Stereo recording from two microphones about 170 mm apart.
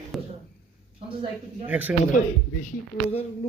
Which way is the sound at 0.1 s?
Centre (ahead or behind).